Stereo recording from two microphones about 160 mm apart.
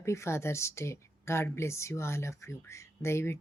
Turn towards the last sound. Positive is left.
turn(degrees=15)  # may be behind; listen again after turning